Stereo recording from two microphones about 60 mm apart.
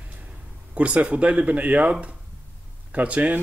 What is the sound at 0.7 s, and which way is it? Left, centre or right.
Speech, right.